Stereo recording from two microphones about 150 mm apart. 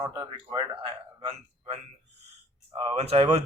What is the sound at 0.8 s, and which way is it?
Speech, 30° right (ahead or behind).